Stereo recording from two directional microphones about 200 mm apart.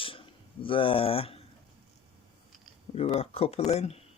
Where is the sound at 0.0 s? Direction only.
25° left (ahead or behind).